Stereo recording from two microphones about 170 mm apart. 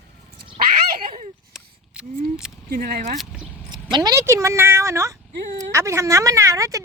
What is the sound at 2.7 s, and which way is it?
Speech, 65° right (ahead or behind).